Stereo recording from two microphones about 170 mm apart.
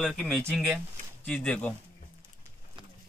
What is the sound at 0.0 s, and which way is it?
Speech, centre (ahead or behind).